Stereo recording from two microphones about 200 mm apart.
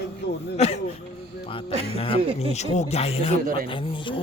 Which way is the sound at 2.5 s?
35° left (ahead or behind).